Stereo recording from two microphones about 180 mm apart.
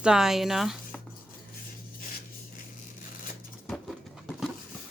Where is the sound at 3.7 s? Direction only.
Centre (ahead or behind).